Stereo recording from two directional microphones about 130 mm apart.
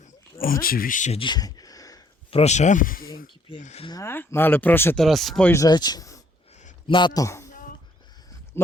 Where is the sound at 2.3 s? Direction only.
55° left (ahead or behind); by 3.2 s 90° left.